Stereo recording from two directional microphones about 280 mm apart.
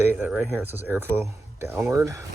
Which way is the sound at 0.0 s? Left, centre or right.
Centre.